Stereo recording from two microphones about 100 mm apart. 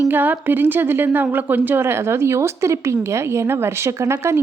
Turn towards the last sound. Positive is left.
turn(degrees=-25)  # may be behind; listen again after turning